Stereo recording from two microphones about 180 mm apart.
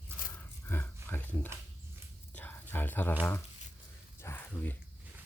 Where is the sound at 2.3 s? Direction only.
10° left (ahead or behind).